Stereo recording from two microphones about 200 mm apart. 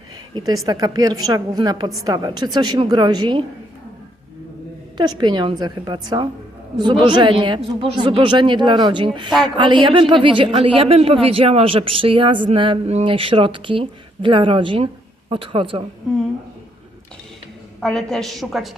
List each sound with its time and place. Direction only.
0.3 s a woman's voice: 20° right (ahead or behind)
4.9 s a woman's voice: 20° right (ahead or behind)
17.7 s a woman's voice: centre (ahead or behind)